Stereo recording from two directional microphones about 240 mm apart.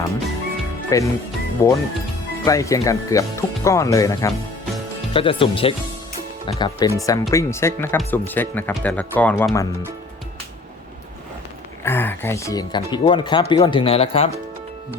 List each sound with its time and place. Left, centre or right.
0.9 s speech: centre
11.8 s speech: centre